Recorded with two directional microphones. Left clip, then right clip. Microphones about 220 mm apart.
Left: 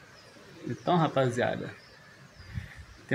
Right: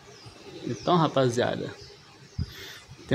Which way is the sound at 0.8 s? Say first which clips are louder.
Right 3 dB; 10° right (ahead or behind).